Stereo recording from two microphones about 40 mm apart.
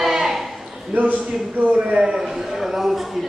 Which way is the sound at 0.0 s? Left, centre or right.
Centre.